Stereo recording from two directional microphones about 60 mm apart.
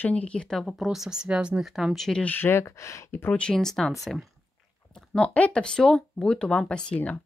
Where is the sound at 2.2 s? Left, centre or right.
Left.